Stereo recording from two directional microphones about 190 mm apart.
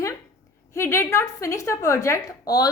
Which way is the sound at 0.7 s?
15° left (ahead or behind).